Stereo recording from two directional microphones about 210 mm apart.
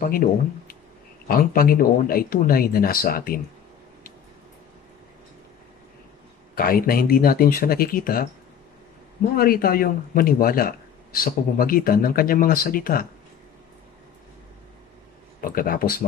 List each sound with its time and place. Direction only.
0.0 s speech: 45° left (ahead or behind)
6.5 s speech: 45° left (ahead or behind)
9.4 s speech: 45° left (ahead or behind)
15.4 s speech: 40° left (ahead or behind)